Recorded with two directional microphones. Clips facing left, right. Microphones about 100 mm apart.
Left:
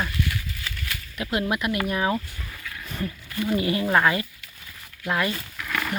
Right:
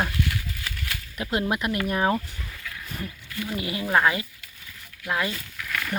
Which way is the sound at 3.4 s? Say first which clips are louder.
Left 6 dB; 5° right (ahead or behind).